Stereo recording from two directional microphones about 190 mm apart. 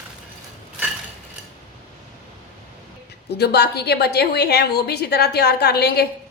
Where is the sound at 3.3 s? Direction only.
60° left (ahead or behind).